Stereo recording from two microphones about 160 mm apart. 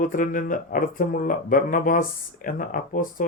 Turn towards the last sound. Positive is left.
turn(degrees=55)  # may be behind; listen again after turning